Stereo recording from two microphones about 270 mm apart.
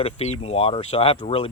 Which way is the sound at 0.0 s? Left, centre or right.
Left.